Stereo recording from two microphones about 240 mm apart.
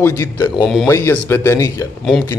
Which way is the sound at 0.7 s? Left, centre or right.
Centre.